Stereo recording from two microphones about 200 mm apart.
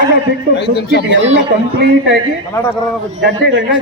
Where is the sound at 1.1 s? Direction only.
65° right (ahead or behind).